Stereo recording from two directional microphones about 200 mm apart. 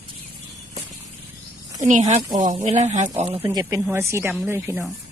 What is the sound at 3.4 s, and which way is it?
Speech, 15° right (ahead or behind).